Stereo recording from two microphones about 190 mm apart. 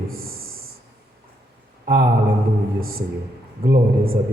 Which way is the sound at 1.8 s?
50° right (ahead or behind).